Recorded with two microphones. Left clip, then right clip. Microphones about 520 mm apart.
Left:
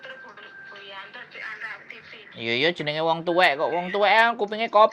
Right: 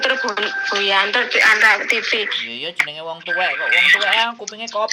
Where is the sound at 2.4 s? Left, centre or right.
Left.